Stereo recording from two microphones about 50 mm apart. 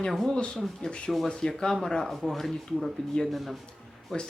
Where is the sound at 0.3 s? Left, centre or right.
Left.